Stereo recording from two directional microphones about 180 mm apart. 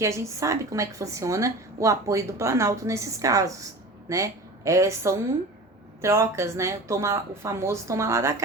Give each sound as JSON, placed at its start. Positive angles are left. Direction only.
{"t": 0.0, "sound": "a woman's voice", "side_deg": -15}